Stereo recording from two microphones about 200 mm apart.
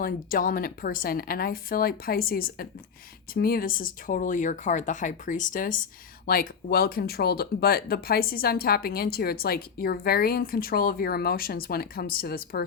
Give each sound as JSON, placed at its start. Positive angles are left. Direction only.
{"t": 0.0, "sound": "speech", "side_deg": 45}